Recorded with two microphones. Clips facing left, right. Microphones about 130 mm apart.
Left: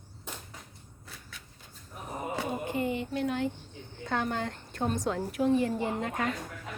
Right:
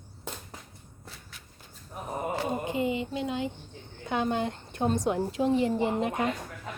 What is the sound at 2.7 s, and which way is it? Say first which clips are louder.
A woman's voice: right 2 dB; 20° right (ahead or behind).